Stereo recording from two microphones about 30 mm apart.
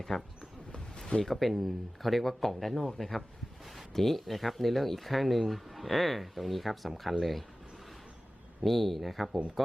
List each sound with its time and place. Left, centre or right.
0.1 s speech: centre
1.2 s speech: centre
3.6 s a sound: centre
3.9 s speech: centre
8.6 s speech: centre